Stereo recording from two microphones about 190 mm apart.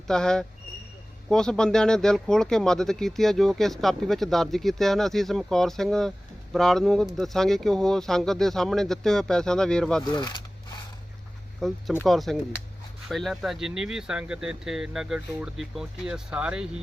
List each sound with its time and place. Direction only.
0.1 s speech: 5° left (ahead or behind)
10.0 s speech: 20° left (ahead or behind)
11.6 s speech: centre (ahead or behind)